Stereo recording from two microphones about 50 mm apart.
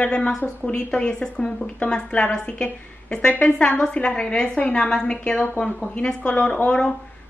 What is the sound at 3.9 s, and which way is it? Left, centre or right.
A woman's voice, centre.